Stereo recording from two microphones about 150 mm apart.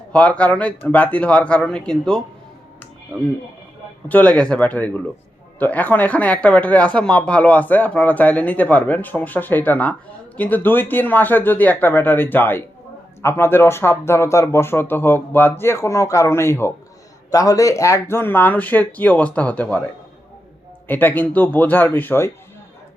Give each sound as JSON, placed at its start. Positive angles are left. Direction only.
{"t": 0.1, "sound": "speech", "side_deg": 10}
{"t": 4.1, "sound": "speech", "side_deg": 10}
{"t": 20.8, "sound": "speech", "side_deg": 15}